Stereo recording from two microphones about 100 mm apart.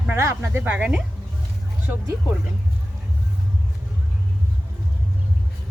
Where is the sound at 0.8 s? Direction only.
10° right (ahead or behind).